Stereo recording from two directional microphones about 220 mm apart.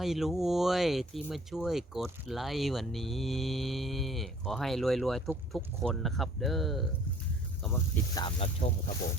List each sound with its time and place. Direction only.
0.0 s speech: centre (ahead or behind)
8.2 s speech: 25° left (ahead or behind)